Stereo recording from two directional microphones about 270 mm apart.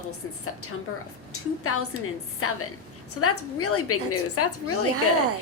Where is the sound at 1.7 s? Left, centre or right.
Left.